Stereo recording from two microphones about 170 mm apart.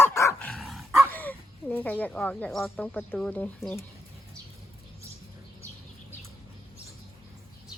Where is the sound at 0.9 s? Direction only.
15° right (ahead or behind).